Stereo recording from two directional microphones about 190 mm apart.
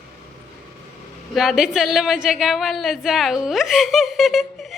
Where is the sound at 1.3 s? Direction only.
Centre (ahead or behind).